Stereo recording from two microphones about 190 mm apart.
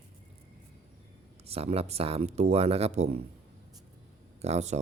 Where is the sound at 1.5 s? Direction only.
30° right (ahead or behind).